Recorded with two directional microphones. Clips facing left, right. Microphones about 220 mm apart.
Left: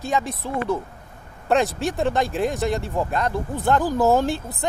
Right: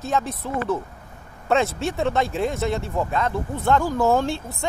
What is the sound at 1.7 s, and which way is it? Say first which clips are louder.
Speech: left 1 dB; centre (ahead or behind).